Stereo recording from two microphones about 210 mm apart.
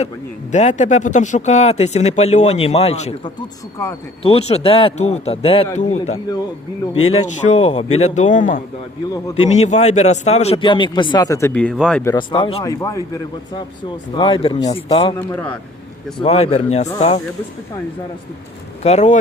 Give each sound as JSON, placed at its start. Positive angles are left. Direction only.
{"t": 0.5, "sound": "speech", "side_deg": 35}
{"t": 12.0, "sound": "speech", "side_deg": 20}
{"t": 14.1, "sound": "speech", "side_deg": 20}
{"t": 15.2, "sound": "a man's voice", "side_deg": 10}
{"t": 16.2, "sound": "speech", "side_deg": 30}
{"t": 18.8, "sound": "speech", "side_deg": 30}